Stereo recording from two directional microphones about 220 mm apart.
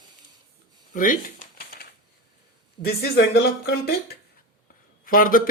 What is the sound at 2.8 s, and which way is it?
Speech, 45° left (ahead or behind).